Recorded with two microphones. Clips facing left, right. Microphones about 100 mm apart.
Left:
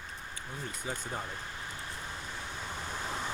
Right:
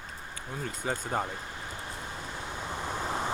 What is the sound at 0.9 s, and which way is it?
Speech, 50° right (ahead or behind).